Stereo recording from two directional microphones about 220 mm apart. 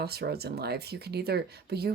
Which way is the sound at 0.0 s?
45° right (ahead or behind).